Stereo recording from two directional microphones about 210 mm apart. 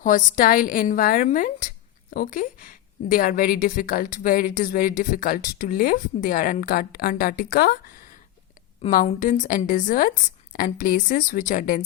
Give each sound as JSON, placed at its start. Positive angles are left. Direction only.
{"t": 0.0, "sound": "a woman's voice", "side_deg": 40}